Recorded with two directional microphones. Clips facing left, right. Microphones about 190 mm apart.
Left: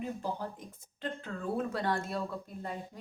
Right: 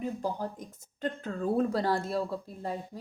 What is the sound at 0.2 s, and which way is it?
A woman's voice, 40° right (ahead or behind).